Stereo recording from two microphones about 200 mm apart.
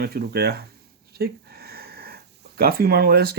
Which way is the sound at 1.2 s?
50° right (ahead or behind).